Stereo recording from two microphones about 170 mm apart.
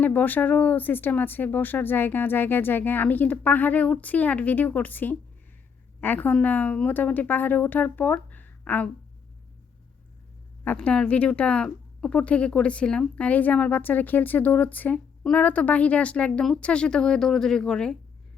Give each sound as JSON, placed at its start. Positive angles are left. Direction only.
{"t": 0.0, "sound": "speech", "side_deg": 10}
{"t": 10.6, "sound": "speech", "side_deg": 10}